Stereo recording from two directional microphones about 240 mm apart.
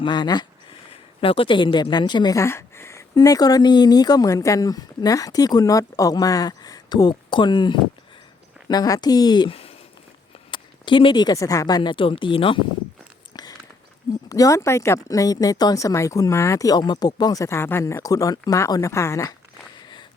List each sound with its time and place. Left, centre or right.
0.0 s speech: centre
13.3 s biting: centre
14.3 s speech: centre
19.8 s a sound: centre